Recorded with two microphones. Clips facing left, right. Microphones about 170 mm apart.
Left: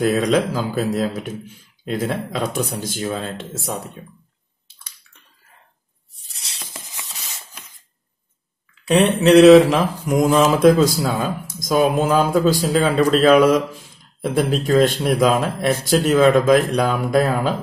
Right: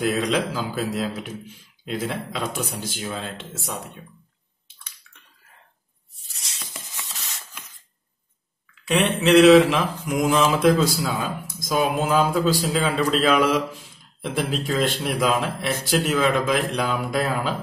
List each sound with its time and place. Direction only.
0.0 s mantra: 45° left (ahead or behind)
8.8 s mantra: 40° left (ahead or behind)